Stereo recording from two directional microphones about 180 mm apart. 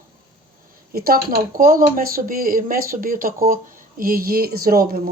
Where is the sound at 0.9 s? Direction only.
55° right (ahead or behind).